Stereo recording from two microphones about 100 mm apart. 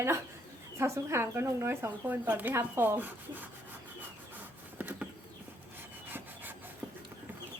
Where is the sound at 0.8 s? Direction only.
25° right (ahead or behind).